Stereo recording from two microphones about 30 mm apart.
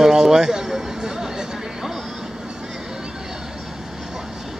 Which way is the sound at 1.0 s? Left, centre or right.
Centre.